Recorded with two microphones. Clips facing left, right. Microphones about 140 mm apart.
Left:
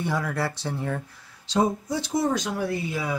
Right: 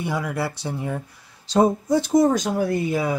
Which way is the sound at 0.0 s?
10° right (ahead or behind).